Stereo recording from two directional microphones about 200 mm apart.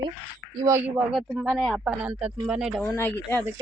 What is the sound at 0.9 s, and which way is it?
Speech, 5° right (ahead or behind).